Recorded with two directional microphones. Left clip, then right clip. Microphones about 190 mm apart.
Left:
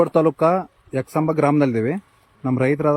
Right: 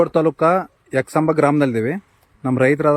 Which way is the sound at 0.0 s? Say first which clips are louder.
Right 1 dB; centre (ahead or behind).